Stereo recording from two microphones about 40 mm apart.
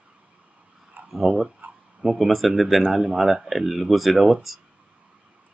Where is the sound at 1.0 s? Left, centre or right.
Right.